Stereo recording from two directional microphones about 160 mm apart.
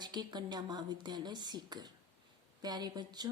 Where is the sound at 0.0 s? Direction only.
25° right (ahead or behind).